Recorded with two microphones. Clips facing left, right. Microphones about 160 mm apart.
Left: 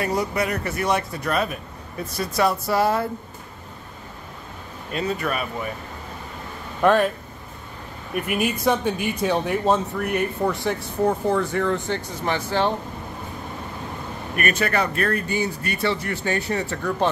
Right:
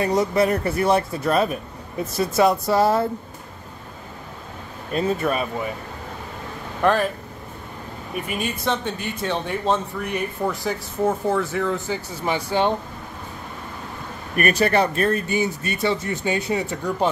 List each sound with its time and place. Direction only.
0.0 s speech: 20° right (ahead or behind)
4.9 s speech: 30° right (ahead or behind)
6.8 s speech: centre (ahead or behind)
8.3 s speech: 10° left (ahead or behind)
12.3 s speech: 15° right (ahead or behind)
14.3 s speech: 35° right (ahead or behind); by 17.1 s 15° right (ahead or behind)